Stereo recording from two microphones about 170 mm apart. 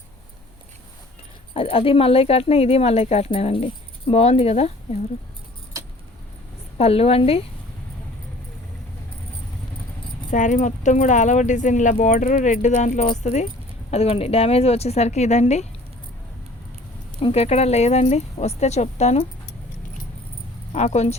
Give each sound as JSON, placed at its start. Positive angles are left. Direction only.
{"t": 1.5, "sound": "speech", "side_deg": 35}
{"t": 6.7, "sound": "speech", "side_deg": 35}
{"t": 10.3, "sound": "speech", "side_deg": 45}
{"t": 17.2, "sound": "speech", "side_deg": 35}
{"t": 20.7, "sound": "speech", "side_deg": 40}